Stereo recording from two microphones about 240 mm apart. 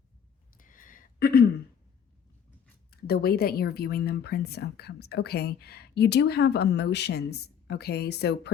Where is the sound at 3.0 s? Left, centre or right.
Left.